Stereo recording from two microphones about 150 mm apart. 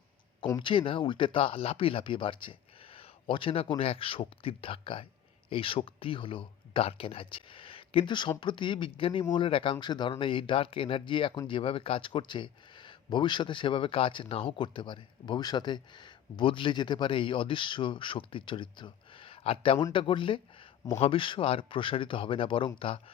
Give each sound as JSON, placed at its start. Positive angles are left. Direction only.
{"t": 0.5, "sound": "speech", "side_deg": 35}